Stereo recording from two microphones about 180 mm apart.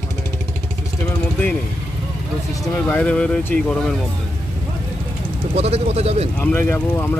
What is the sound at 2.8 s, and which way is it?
Speech, 5° left (ahead or behind).